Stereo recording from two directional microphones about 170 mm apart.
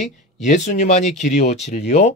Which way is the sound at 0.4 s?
45° left (ahead or behind).